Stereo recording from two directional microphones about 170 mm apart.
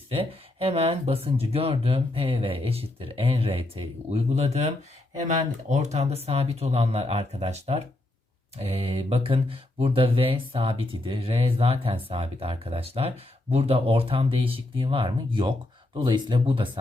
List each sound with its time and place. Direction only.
0.1 s speech: 35° right (ahead or behind)